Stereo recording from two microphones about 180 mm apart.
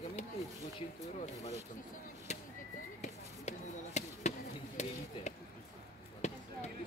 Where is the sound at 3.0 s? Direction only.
40° left (ahead or behind).